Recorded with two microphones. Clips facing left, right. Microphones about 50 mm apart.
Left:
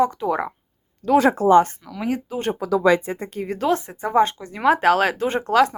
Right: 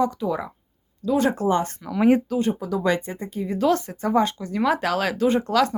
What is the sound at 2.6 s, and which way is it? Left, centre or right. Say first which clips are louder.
Speech: left 5 dB; left.